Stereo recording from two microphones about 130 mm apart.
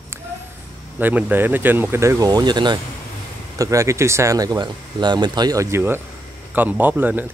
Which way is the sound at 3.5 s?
25° right (ahead or behind).